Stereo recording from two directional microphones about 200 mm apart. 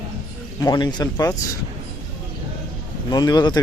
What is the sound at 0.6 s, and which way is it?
Speech, 20° left (ahead or behind).